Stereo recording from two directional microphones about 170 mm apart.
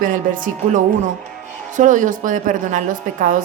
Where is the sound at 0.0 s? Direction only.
50° right (ahead or behind).